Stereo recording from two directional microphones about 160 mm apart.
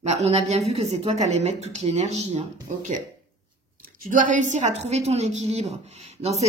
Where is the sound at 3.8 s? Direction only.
60° right (ahead or behind); by 6.4 s 40° right (ahead or behind).